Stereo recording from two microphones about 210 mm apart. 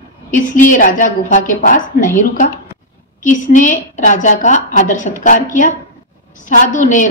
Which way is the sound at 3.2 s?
35° left (ahead or behind).